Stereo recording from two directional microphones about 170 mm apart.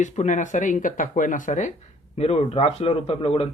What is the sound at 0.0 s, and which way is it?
Speech, 45° left (ahead or behind).